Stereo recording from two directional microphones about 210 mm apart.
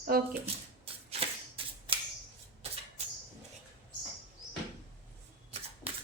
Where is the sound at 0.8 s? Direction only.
30° right (ahead or behind).